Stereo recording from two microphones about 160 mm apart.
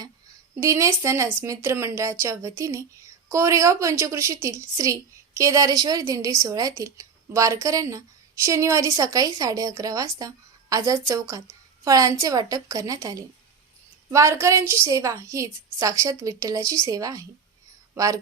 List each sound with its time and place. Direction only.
0.6 s a woman's voice: 15° right (ahead or behind)